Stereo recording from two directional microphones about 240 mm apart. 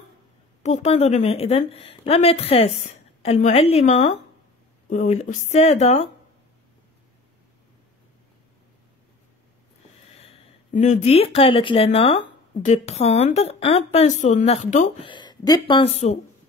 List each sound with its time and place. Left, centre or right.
0.6 s a woman's voice: left
10.1 s a woman's voice: left
15.0 s a woman's voice: centre